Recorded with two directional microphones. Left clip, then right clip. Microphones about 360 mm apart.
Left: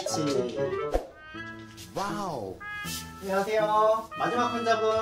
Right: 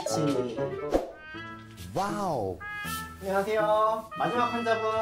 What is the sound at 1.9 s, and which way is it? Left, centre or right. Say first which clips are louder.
Speech: right 2 dB; right.